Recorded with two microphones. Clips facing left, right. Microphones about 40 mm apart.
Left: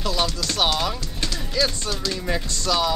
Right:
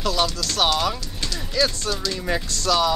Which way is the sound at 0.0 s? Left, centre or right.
Centre.